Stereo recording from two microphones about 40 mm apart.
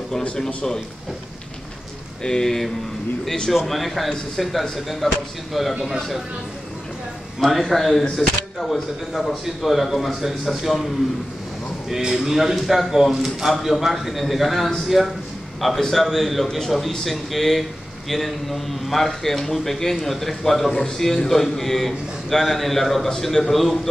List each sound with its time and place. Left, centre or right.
2.2 s a man's voice: centre
7.3 s a man's voice: centre
8.2 s speech: left
8.6 s a man's voice: centre
12.2 s a man's voice: centre